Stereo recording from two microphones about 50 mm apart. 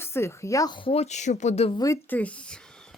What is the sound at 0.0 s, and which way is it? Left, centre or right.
Speech, left.